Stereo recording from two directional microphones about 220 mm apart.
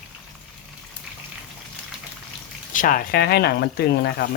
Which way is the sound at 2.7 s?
40° left (ahead or behind).